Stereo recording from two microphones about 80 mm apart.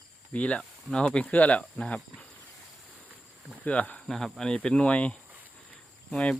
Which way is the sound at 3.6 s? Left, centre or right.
Centre.